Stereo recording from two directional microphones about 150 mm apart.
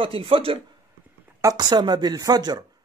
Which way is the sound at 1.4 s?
25° right (ahead or behind).